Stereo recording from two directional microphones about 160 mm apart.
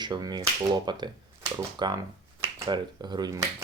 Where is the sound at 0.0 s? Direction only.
25° right (ahead or behind).